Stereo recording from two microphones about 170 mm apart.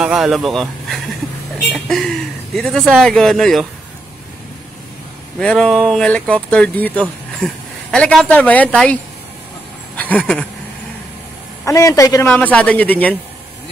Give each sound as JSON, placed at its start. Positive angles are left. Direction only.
{"t": 0.0, "sound": "speech", "side_deg": -5}
{"t": 2.5, "sound": "speech", "side_deg": 5}
{"t": 5.4, "sound": "speech", "side_deg": 5}
{"t": 9.9, "sound": "speech", "side_deg": 10}
{"t": 11.6, "sound": "a man's voice", "side_deg": 20}
{"t": 12.3, "sound": "speech", "side_deg": 10}